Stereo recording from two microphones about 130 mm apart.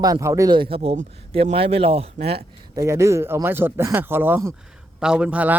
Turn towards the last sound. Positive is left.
turn(degrees=-10)  # may be behind; listen again after turning